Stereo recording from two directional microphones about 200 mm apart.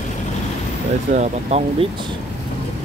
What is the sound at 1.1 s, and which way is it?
Speech, 35° right (ahead or behind).